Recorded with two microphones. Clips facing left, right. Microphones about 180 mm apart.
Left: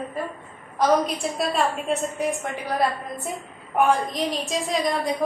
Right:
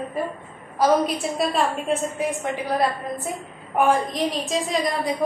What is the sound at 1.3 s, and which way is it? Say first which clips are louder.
A woman's voice: right 1 dB; centre (ahead or behind).